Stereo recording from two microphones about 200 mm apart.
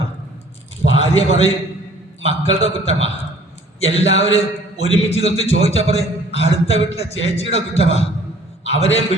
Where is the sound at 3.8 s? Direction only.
30° left (ahead or behind).